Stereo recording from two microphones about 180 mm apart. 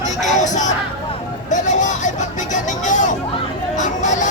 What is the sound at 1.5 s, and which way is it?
Hubbub, 45° left (ahead or behind).